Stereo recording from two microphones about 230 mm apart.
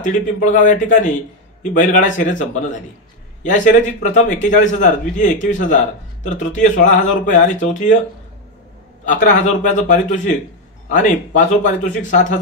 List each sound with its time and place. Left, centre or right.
0.0 s a man's voice: left
9.0 s a man's voice: left